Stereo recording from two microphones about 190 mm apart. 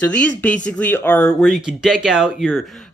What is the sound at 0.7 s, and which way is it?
Speech, 10° left (ahead or behind).